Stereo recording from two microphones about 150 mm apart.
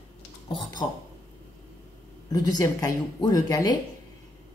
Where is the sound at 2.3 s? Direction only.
25° left (ahead or behind).